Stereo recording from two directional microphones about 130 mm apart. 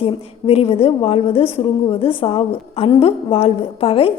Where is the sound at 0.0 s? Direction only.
50° left (ahead or behind).